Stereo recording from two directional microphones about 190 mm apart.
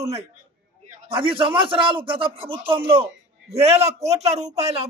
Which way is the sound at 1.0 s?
25° right (ahead or behind).